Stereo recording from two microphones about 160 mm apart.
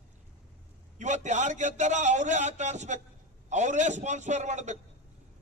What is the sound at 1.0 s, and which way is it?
A man's voice, 50° right (ahead or behind).